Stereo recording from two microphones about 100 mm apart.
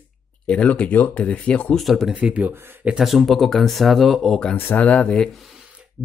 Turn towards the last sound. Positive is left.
turn(degrees=10)  # may be behind; listen again after turning